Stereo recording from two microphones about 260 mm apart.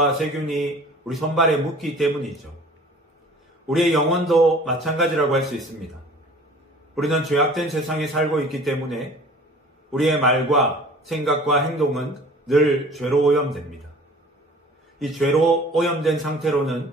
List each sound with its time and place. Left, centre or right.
0.0 s a man's voice: centre
3.6 s a man's voice: centre
7.0 s a man's voice: centre
15.0 s a man's voice: centre